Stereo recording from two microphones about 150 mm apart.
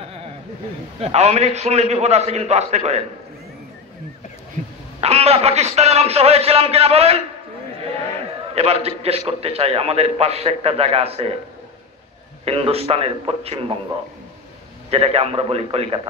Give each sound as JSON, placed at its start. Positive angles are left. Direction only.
{"t": 1.0, "sound": "a man's voice", "side_deg": -45}
{"t": 5.0, "sound": "a man's voice", "side_deg": -45}
{"t": 8.1, "sound": "a sound", "side_deg": -45}
{"t": 8.8, "sound": "a man's voice", "side_deg": -40}
{"t": 12.4, "sound": "a man's voice", "side_deg": -40}
{"t": 14.9, "sound": "a man's voice", "side_deg": -45}